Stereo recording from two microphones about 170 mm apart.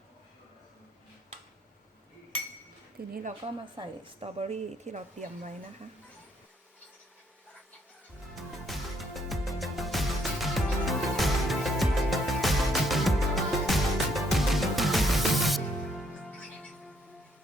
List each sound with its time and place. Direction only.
3.0 s speech: 65° right (ahead or behind)
3.4 s a woman's voice: 30° right (ahead or behind)
8.6 s music: centre (ahead or behind)